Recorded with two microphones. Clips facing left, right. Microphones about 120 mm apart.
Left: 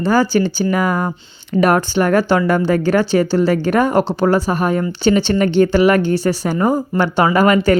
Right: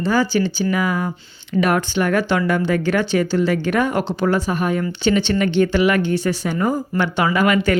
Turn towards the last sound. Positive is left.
turn(degrees=40)  # may be behind; listen again after turning